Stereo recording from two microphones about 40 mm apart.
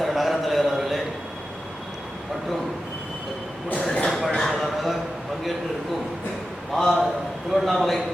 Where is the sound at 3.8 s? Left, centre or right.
Left.